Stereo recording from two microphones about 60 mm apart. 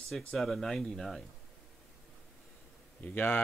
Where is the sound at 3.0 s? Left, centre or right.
Left.